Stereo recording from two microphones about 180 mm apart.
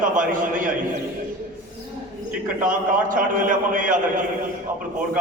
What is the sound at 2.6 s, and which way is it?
A man's voice, 50° right (ahead or behind).